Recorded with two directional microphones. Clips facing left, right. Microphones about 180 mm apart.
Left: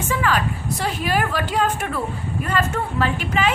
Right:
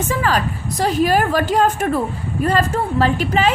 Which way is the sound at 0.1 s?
40° right (ahead or behind).